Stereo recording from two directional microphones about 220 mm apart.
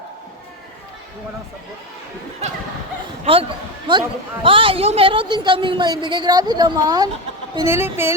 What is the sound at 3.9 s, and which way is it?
A woman's voice, 20° right (ahead or behind).